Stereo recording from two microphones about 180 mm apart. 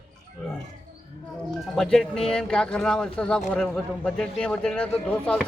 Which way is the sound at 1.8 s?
5° left (ahead or behind).